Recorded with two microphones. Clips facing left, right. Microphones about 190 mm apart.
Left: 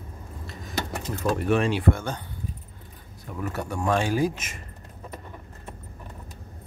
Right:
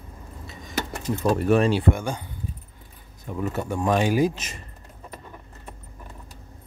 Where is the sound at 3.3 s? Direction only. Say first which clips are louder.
Right 3 dB; 20° right (ahead or behind).